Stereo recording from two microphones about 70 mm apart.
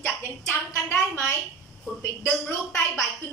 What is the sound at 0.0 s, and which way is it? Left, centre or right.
A woman's voice, left.